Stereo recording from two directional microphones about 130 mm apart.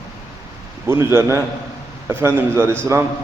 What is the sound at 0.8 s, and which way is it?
A man's voice, 20° right (ahead or behind).